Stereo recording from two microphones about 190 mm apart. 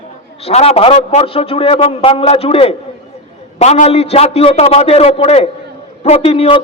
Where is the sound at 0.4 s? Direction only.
35° left (ahead or behind).